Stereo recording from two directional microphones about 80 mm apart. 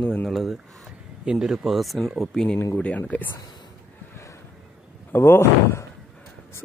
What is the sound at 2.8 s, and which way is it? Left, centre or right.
Speech, centre.